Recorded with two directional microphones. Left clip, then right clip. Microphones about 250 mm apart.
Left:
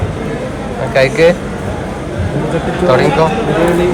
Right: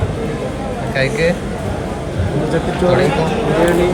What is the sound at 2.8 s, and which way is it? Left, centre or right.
Speech, centre.